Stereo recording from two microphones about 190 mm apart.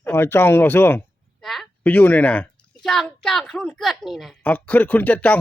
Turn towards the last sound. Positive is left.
turn(degrees=10)  # may be behind; listen again after turning